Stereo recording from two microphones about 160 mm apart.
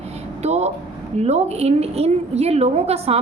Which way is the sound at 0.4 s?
45° right (ahead or behind).